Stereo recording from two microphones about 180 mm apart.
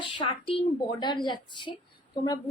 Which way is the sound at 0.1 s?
30° left (ahead or behind).